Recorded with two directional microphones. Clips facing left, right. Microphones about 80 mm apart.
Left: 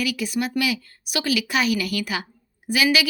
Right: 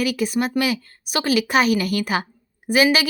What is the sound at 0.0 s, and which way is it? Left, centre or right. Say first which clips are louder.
Speech: right 4 dB; right.